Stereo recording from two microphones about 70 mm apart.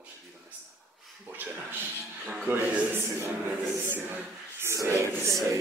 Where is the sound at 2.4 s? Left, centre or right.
Right.